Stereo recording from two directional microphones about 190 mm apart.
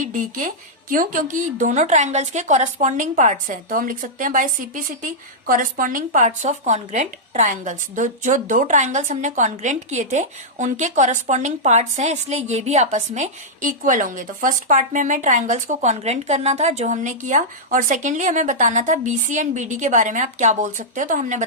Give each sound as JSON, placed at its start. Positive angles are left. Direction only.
{"t": 0.0, "sound": "speech", "side_deg": -45}